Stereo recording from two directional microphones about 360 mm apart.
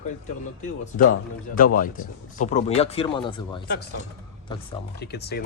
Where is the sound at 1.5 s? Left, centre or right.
Left.